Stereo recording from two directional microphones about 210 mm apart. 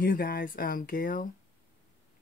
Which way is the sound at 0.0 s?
45° left (ahead or behind).